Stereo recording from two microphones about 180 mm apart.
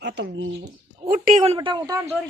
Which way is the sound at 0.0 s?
75° right (ahead or behind).